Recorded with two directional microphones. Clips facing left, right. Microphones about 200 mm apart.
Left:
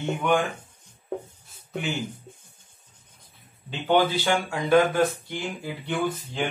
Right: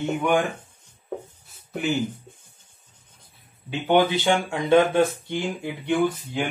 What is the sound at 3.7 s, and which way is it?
Speech, 15° right (ahead or behind).